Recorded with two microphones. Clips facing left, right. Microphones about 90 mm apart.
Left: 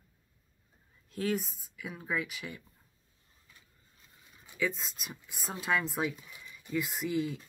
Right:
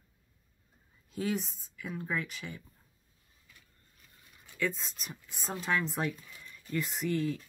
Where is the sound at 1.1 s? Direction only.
Centre (ahead or behind).